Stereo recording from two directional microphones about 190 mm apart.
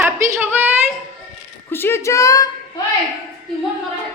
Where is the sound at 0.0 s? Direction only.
10° right (ahead or behind).